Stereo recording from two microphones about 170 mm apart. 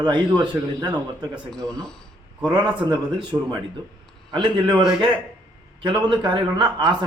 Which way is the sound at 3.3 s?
15° right (ahead or behind).